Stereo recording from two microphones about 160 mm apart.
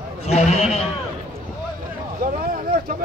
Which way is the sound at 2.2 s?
65° right (ahead or behind).